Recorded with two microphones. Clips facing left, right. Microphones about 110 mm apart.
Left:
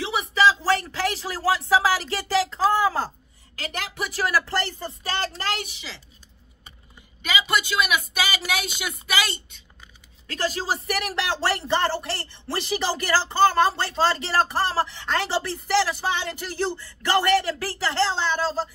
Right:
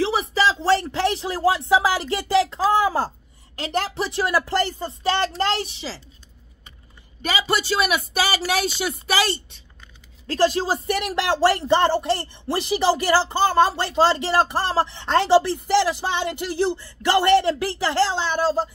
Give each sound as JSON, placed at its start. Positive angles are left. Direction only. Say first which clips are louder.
{"t": 0.0, "sound": "speech", "louder": "even", "side_deg": -35}
{"t": 3.7, "sound": "speech", "louder": "right 7 dB", "side_deg": -35}
{"t": 5.4, "sound": "speech", "louder": "right 6 dB", "side_deg": -30}
{"t": 7.2, "sound": "speech", "louder": "right 2 dB", "side_deg": -40}